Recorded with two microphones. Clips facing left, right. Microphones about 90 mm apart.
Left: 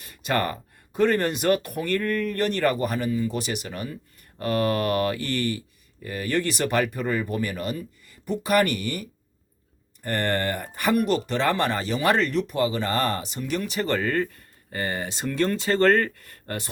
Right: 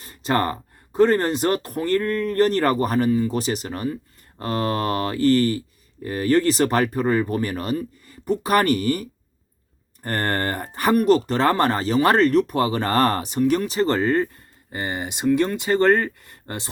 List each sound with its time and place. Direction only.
0.0 s speech: 30° right (ahead or behind)